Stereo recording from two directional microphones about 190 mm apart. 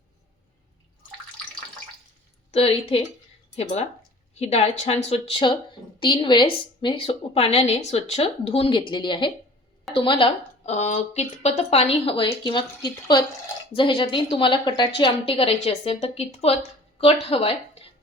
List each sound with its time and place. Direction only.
2.5 s a woman's voice: 30° left (ahead or behind)